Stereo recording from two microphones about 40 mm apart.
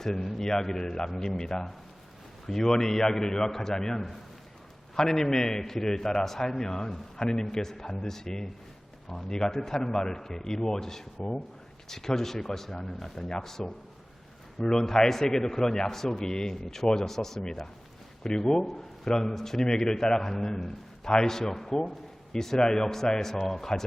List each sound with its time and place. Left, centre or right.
0.0 s a man's voice: centre